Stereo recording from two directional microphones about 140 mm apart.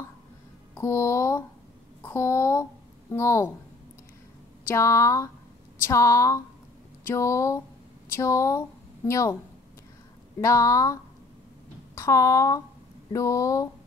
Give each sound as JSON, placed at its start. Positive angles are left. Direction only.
{"t": 0.7, "sound": "a child's voice", "side_deg": 20}
{"t": 4.6, "sound": "a woman's voice", "side_deg": 20}
{"t": 10.4, "sound": "speech", "side_deg": 25}